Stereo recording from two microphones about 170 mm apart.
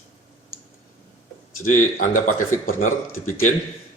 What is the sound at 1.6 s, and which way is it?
Speech, 50° left (ahead or behind).